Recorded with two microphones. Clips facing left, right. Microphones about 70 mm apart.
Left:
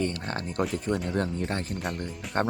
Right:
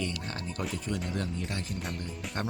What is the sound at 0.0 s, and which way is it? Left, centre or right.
Speech, left.